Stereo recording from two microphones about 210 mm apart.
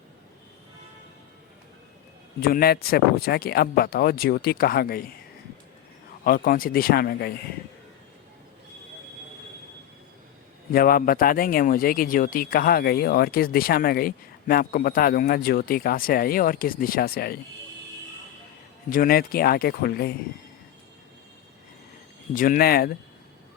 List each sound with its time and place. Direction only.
2.4 s speech: 45° left (ahead or behind)
6.2 s speech: 45° left (ahead or behind)
10.7 s speech: 45° left (ahead or behind)
18.9 s speech: 40° left (ahead or behind)
22.4 s speech: 45° left (ahead or behind)